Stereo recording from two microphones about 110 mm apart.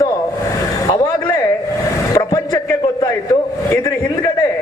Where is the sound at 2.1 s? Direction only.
35° left (ahead or behind).